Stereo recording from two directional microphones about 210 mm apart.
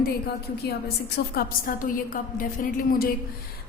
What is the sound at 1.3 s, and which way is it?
A woman's voice, 40° left (ahead or behind).